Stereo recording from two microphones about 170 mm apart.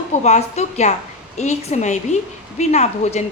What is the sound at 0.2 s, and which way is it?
A woman's voice, 40° left (ahead or behind).